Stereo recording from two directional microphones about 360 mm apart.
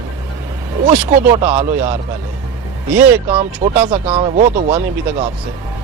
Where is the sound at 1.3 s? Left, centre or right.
Centre.